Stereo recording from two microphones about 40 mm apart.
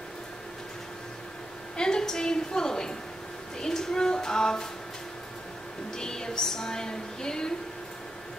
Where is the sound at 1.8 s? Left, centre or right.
Centre.